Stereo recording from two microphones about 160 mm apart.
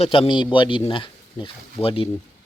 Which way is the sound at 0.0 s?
35° left (ahead or behind).